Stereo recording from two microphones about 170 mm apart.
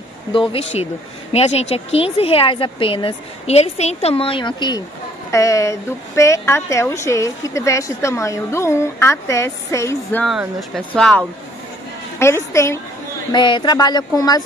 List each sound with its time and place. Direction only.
0.3 s speech: 30° left (ahead or behind)
10.7 s speech: 5° left (ahead or behind)
13.3 s speech: 25° left (ahead or behind)